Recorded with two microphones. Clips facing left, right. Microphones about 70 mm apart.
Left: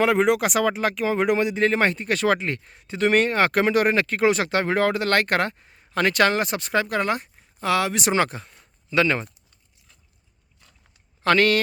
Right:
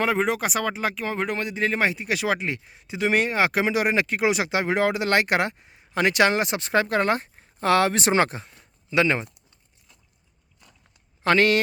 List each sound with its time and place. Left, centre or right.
0.0 s speech: centre
11.2 s speech: right